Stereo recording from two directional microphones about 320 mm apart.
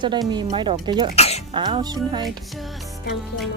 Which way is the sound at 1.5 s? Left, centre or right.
Centre.